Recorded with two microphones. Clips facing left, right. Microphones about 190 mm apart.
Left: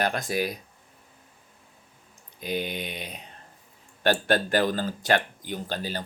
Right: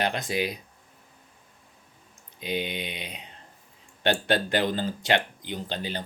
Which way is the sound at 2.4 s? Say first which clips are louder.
Even; 20° right (ahead or behind).